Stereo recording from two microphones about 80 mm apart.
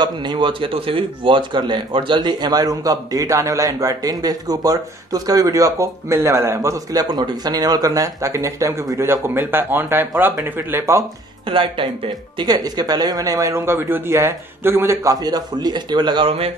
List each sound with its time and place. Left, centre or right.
0.0 s speech: right
9.0 s speech: right
11.4 s speech: right
12.4 s speech: right
15.0 s a man's voice: right